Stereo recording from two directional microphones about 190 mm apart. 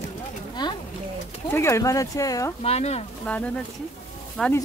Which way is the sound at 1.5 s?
15° left (ahead or behind).